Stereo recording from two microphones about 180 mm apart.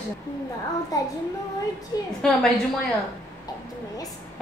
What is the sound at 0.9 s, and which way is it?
A woman's voice, 20° left (ahead or behind).